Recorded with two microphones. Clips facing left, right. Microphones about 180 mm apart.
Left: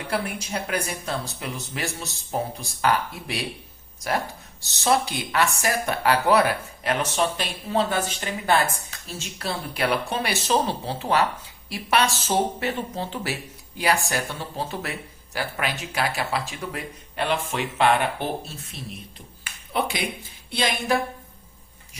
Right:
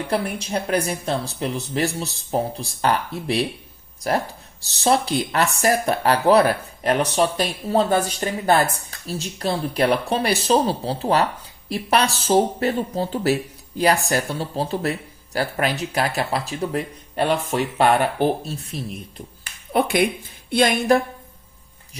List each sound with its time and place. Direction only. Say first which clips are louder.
0.5 s speech: right 6 dB; 35° right (ahead or behind)
4.6 s speech: right 3 dB; 35° right (ahead or behind)
19.7 s speech: right 8 dB; 55° right (ahead or behind)
20.5 s a sound: right 7 dB; 50° right (ahead or behind)